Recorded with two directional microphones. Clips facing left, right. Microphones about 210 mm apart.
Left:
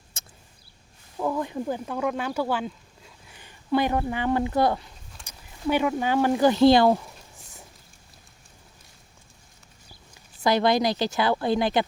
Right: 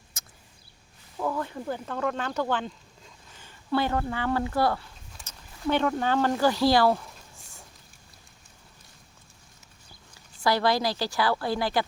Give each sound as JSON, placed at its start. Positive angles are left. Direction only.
{"t": 0.1, "sound": "a sound", "side_deg": 30}
{"t": 1.2, "sound": "speech", "side_deg": 15}
{"t": 10.4, "sound": "a woman's voice", "side_deg": 20}